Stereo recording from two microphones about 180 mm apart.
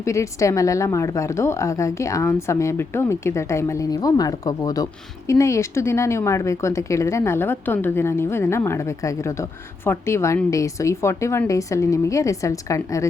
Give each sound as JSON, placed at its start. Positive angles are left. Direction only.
{"t": 0.0, "sound": "a woman's voice", "side_deg": 15}